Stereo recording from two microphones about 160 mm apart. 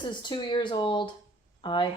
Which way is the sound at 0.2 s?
30° left (ahead or behind).